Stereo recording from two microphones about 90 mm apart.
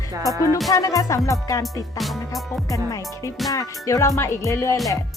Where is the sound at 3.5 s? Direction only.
35° left (ahead or behind).